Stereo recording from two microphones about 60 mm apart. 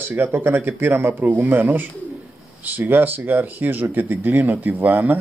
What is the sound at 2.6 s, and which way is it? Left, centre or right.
Speech, right.